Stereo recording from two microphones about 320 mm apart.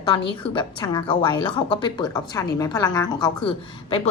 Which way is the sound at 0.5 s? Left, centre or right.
Centre.